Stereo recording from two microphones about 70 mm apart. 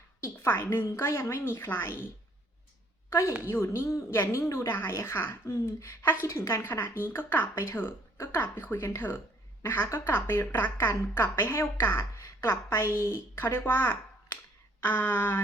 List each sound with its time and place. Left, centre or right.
0.2 s speech: left
3.1 s a woman's voice: left